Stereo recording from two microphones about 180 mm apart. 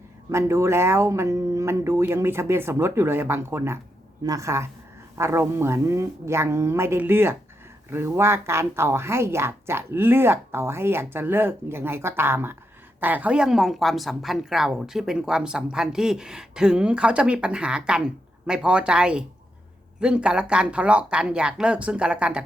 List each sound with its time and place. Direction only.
0.3 s speech: 15° right (ahead or behind)